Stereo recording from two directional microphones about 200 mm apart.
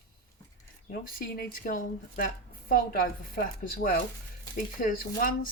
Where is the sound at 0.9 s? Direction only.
45° left (ahead or behind).